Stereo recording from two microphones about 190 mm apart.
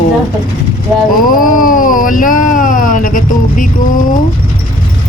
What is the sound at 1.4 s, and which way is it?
Speech, 45° left (ahead or behind).